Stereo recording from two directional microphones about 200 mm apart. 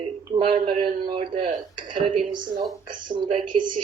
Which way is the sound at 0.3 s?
25° right (ahead or behind).